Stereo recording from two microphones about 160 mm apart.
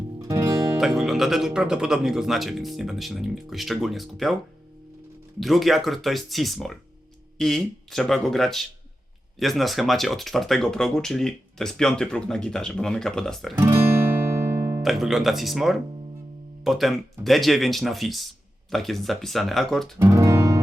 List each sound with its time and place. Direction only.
0.2 s music: 20° right (ahead or behind)
0.8 s speech: centre (ahead or behind)
5.4 s speech: centre (ahead or behind)
13.6 s music: 15° right (ahead or behind)
14.8 s speech: centre (ahead or behind)
20.0 s guitar: 15° right (ahead or behind)